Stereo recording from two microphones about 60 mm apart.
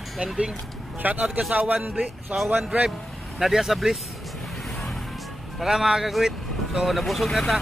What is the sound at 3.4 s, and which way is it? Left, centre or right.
Speech, centre.